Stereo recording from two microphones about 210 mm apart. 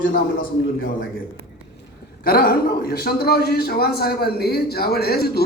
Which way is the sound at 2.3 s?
45° left (ahead or behind).